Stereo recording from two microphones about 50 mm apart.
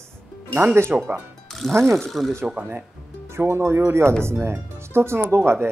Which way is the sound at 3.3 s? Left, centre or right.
Right.